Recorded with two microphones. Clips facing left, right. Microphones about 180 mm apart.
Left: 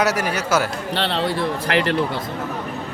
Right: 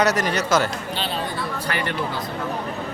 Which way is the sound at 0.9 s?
70° left (ahead or behind).